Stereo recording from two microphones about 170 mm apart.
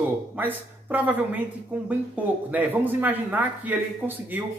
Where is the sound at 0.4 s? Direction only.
10° right (ahead or behind).